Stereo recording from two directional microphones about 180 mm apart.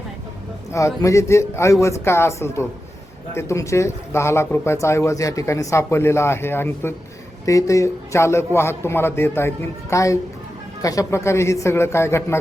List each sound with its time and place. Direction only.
0.7 s speech: 15° left (ahead or behind)